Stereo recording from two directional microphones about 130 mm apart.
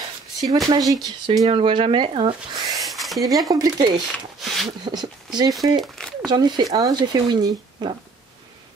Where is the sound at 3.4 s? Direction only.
30° right (ahead or behind).